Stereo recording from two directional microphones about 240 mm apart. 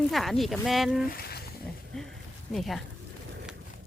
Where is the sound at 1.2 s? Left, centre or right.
Left.